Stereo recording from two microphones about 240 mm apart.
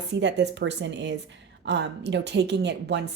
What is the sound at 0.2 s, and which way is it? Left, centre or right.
A woman's voice, right.